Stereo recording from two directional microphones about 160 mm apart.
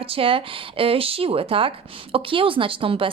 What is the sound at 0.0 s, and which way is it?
A woman's voice, 35° right (ahead or behind).